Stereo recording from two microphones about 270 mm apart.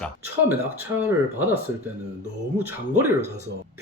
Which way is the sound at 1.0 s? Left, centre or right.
Centre.